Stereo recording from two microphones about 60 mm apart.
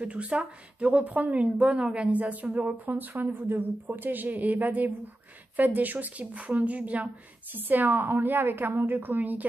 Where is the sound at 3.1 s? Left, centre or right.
Right.